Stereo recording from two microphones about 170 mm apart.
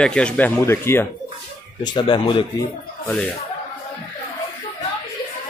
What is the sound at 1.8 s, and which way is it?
Speech, 25° left (ahead or behind).